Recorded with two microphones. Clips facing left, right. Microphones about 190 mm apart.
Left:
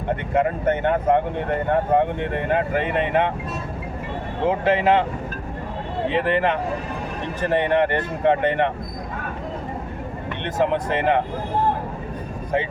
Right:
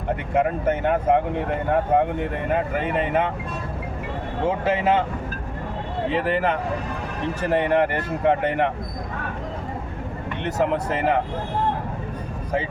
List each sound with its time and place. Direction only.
0.3 s speech: 5° right (ahead or behind)
4.4 s speech: centre (ahead or behind)
6.1 s speech: 5° right (ahead or behind)
10.4 s speech: 5° right (ahead or behind)